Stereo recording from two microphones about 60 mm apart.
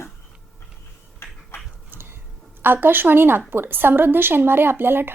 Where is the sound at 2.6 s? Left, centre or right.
Right.